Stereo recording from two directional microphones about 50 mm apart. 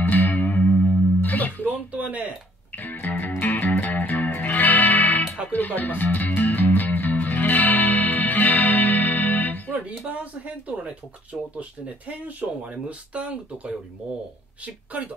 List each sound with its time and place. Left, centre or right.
0.0 s music: left
1.7 s speech: right
2.8 s music: left
9.7 s speech: right
12.1 s speech: right